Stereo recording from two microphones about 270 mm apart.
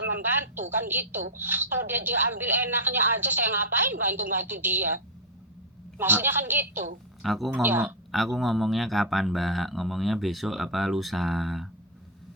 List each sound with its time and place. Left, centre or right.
0.1 s a woman's voice: centre
6.0 s a woman's voice: centre